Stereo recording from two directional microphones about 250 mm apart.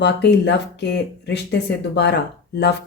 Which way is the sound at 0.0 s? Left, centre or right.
Left.